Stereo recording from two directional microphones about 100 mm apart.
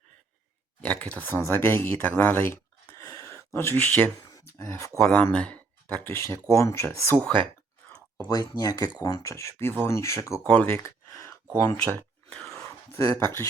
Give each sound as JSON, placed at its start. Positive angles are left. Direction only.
{"t": 0.8, "sound": "speech", "side_deg": 15}
{"t": 4.5, "sound": "speech", "side_deg": 30}
{"t": 4.9, "sound": "speech", "side_deg": 5}
{"t": 6.1, "sound": "speech", "side_deg": 25}
{"t": 8.3, "sound": "speech", "side_deg": 40}
{"t": 9.3, "sound": "speech", "side_deg": 30}
{"t": 10.4, "sound": "speech", "side_deg": 15}
{"t": 12.3, "sound": "dog", "side_deg": 5}
{"t": 12.5, "sound": "speech", "side_deg": 30}